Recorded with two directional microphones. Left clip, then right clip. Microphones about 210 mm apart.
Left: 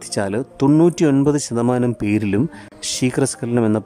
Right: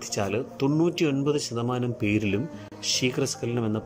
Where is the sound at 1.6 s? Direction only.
55° left (ahead or behind).